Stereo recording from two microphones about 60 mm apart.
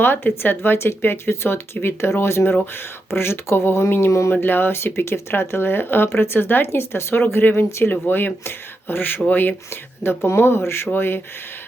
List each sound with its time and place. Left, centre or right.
0.0 s speech: left
10.2 s speech: left